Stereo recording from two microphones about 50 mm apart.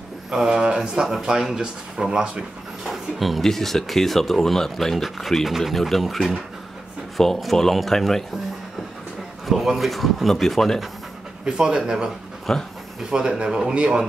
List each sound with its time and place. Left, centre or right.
0.3 s speech: centre
9.5 s speech: centre
11.4 s speech: centre
12.5 s speech: centre
13.1 s speech: centre